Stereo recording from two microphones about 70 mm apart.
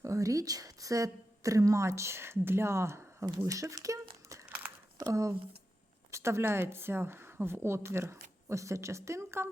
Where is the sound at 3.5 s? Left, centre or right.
Right.